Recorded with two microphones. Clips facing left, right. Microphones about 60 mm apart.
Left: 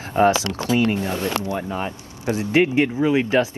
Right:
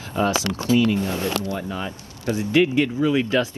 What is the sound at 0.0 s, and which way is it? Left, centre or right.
Speech, left.